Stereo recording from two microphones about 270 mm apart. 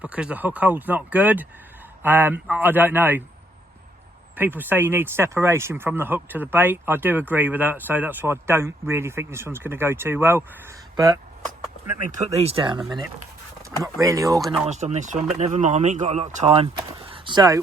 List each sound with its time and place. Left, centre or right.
0.0 s speech: centre
4.4 s speech: centre
12.2 s speech: right
14.0 s speech: centre
14.6 s speech: right
17.1 s a sound: centre